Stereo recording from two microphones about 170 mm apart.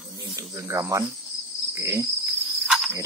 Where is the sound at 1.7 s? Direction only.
15° right (ahead or behind).